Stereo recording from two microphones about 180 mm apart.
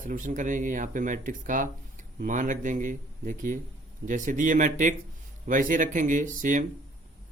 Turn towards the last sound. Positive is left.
turn(degrees=-45)  # may be behind; listen again after turning